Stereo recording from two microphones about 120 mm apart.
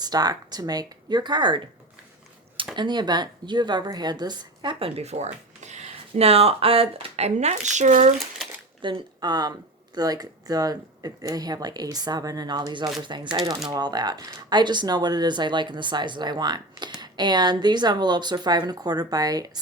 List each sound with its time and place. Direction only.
0.0 s speech: 35° right (ahead or behind)
2.7 s speech: 40° right (ahead or behind)
4.9 s speech: 65° right (ahead or behind); by 8.1 s 90° right
8.8 s speech: 40° right (ahead or behind)